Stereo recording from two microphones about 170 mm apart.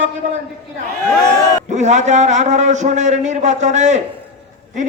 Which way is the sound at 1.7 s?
45° right (ahead or behind).